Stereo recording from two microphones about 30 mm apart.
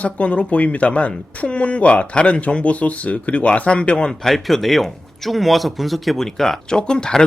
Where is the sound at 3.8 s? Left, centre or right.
Left.